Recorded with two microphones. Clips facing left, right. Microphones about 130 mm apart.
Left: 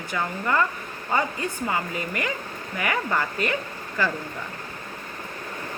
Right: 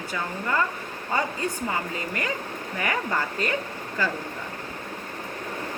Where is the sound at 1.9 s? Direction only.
35° right (ahead or behind).